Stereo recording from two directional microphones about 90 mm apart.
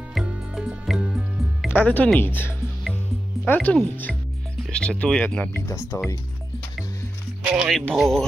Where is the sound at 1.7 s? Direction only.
20° left (ahead or behind).